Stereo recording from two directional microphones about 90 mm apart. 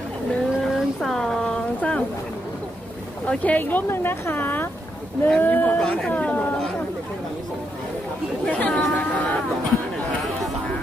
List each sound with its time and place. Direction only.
0.7 s a sound: 5° left (ahead or behind)
3.3 s speech: 15° left (ahead or behind)
5.8 s speech: 10° left (ahead or behind)
8.5 s speech: 15° left (ahead or behind)